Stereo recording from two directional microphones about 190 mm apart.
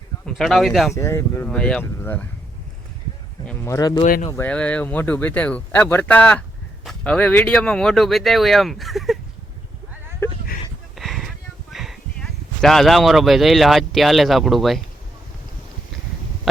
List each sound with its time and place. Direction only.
0.3 s speech: centre (ahead or behind)
0.9 s speech: 15° left (ahead or behind)
3.4 s speech: 10° left (ahead or behind)
4.0 s speech: 40° left (ahead or behind)
4.3 s speech: 10° left (ahead or behind)
10.2 s a sound: 15° left (ahead or behind)
10.9 s a sound: centre (ahead or behind)